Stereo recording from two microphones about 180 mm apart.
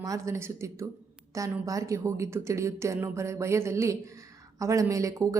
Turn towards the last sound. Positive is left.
turn(degrees=-20)  # may be behind; listen again after turning